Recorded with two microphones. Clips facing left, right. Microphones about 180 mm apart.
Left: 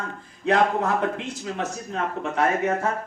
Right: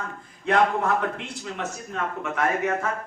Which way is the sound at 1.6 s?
35° left (ahead or behind).